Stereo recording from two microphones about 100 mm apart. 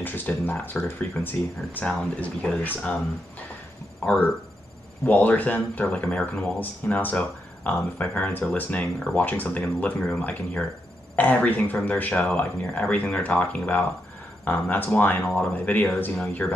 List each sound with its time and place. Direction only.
0.0 s speech: 20° left (ahead or behind)
4.0 s speech: 15° left (ahead or behind)